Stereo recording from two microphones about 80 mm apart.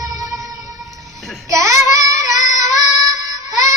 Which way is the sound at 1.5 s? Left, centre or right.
Right.